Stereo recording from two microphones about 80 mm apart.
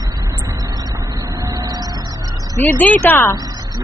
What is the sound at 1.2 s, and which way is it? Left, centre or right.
Vehicle, right.